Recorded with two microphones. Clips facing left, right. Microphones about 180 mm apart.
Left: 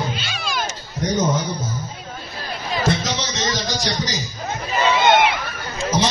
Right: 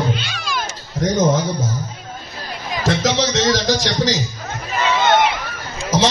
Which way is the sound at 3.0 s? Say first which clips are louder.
Right 7 dB; 90° right.